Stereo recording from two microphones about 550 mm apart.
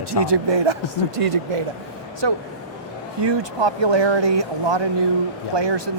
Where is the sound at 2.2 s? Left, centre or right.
Right.